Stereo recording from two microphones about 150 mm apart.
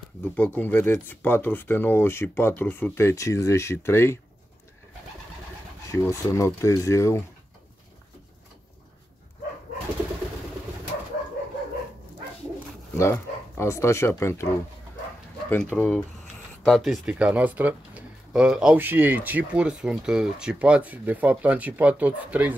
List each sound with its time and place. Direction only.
0.2 s speech: 10° left (ahead or behind)
5.9 s speech: 20° left (ahead or behind)
12.9 s speech: 20° left (ahead or behind)
15.7 s speech: 10° left (ahead or behind)
16.6 s speech: centre (ahead or behind)